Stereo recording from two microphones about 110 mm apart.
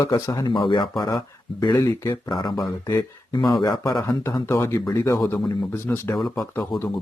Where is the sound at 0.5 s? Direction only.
45° left (ahead or behind).